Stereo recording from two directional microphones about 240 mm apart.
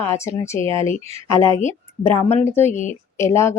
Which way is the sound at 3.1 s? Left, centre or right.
Centre.